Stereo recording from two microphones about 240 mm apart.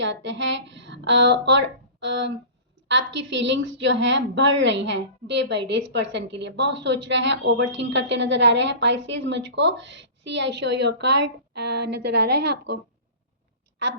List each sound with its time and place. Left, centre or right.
0.0 s a woman's voice: right